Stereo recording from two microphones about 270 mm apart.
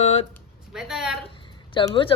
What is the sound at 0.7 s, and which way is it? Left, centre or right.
Speech, centre.